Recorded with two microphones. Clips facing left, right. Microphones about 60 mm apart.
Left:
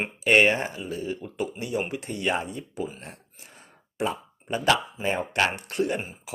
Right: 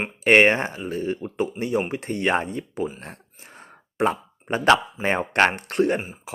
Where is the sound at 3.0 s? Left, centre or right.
Right.